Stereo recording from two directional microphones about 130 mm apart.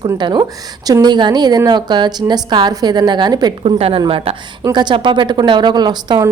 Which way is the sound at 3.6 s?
50° right (ahead or behind).